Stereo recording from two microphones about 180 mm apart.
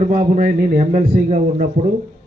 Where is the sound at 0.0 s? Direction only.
45° right (ahead or behind).